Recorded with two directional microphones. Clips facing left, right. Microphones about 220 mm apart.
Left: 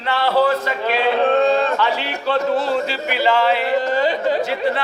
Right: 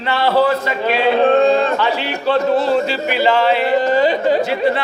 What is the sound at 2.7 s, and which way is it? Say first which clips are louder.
Speech: right 4 dB; 25° right (ahead or behind).